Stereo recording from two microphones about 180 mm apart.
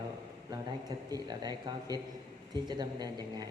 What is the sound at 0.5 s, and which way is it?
A man's voice, 20° right (ahead or behind).